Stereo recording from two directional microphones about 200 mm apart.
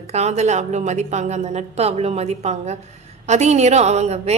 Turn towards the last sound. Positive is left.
turn(degrees=-35)  # may be behind; listen again after turning